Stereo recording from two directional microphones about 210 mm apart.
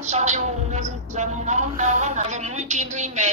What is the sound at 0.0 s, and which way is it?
A woman's voice, 35° right (ahead or behind).